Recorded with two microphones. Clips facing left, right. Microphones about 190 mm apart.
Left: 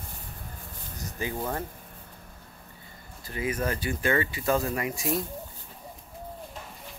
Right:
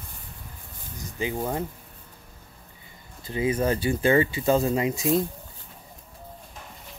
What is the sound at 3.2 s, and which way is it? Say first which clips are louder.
Speech: right 6 dB; 25° right (ahead or behind).